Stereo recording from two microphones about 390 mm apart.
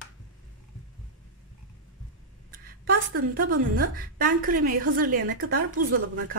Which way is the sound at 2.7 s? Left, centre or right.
Right.